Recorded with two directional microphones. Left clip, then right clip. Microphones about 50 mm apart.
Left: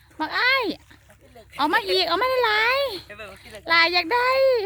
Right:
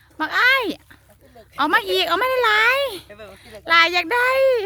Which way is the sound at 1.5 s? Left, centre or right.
Centre.